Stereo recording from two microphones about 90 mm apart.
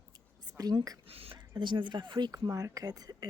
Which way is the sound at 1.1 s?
90° right.